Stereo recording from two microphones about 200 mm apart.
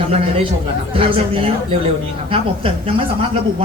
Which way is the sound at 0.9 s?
25° right (ahead or behind).